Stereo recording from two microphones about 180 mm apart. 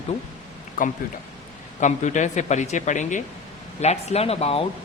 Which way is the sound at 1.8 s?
40° left (ahead or behind).